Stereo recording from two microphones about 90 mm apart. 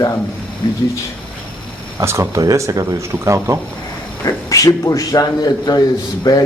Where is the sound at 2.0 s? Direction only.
30° right (ahead or behind).